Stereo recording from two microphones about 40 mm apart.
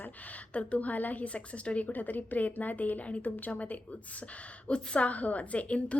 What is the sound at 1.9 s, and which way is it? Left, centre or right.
A woman's voice, left.